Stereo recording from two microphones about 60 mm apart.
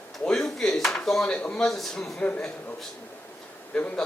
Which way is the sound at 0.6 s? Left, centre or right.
Centre.